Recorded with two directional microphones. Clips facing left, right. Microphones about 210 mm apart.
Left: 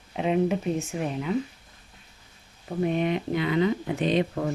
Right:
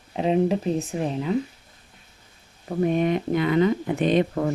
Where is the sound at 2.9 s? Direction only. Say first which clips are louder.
Right 3 dB; 45° right (ahead or behind).